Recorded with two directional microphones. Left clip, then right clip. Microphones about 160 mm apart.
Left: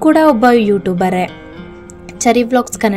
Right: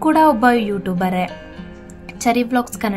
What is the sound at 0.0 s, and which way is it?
A woman's voice, 20° left (ahead or behind).